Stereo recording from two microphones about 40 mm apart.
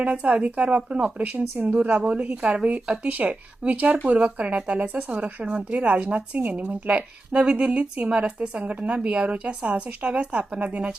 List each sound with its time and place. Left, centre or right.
0.0 s speech: right
0.8 s speech: right
1.2 s speech: right